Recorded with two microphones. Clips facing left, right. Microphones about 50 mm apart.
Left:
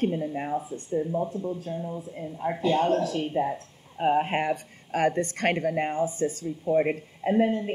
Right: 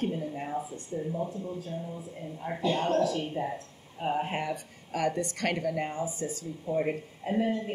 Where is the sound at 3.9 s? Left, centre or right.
Left.